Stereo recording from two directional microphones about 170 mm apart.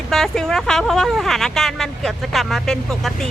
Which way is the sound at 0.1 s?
5° left (ahead or behind).